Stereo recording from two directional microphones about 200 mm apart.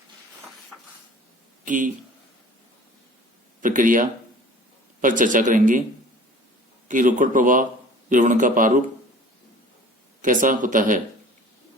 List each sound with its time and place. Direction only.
1.6 s speech: 40° right (ahead or behind)
3.6 s speech: 40° right (ahead or behind)
6.8 s speech: 40° right (ahead or behind)
10.2 s speech: 40° right (ahead or behind)